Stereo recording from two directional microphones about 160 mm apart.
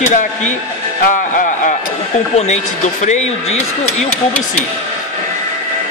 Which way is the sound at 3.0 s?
45° left (ahead or behind).